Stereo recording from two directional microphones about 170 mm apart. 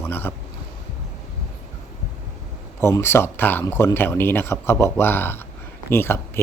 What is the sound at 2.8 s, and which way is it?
Speech, 15° left (ahead or behind).